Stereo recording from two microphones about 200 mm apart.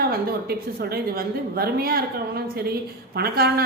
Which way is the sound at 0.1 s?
50° right (ahead or behind).